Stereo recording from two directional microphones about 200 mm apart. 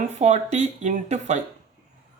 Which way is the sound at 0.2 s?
35° right (ahead or behind).